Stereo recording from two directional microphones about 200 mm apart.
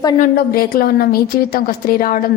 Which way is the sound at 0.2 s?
50° left (ahead or behind).